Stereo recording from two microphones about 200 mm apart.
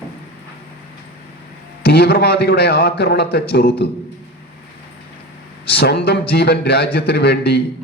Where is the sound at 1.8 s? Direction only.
55° left (ahead or behind).